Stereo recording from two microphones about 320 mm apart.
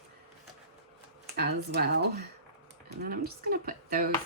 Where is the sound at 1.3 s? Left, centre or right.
Right.